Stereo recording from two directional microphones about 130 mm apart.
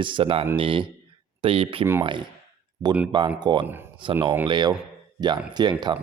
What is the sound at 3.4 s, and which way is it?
Speech, 35° right (ahead or behind).